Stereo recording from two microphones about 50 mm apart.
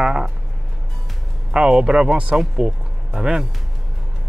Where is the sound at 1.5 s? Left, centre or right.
Centre.